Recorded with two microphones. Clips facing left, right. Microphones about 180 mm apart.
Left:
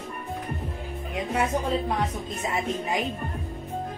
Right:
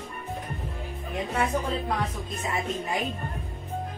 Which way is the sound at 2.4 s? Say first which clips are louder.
Left 2 dB; 20° left (ahead or behind).